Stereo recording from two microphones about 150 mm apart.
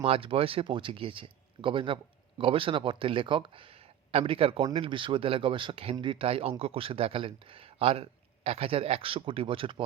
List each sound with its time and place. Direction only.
0.0 s speech: 40° right (ahead or behind)